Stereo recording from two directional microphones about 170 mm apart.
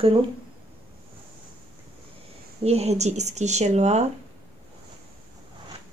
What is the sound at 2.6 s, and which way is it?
Speech, 40° right (ahead or behind).